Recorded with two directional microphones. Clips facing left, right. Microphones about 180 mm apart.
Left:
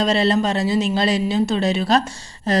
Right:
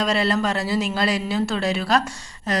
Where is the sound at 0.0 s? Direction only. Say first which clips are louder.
Left 3 dB; 25° left (ahead or behind).